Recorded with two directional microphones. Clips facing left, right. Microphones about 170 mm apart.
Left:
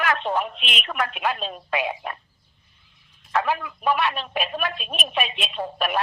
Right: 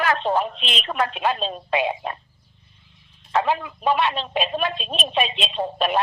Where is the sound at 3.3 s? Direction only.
25° right (ahead or behind).